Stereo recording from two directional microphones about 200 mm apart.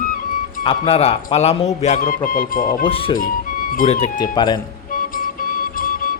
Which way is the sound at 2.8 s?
25° left (ahead or behind).